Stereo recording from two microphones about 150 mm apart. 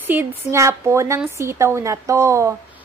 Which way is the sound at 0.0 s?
15° right (ahead or behind).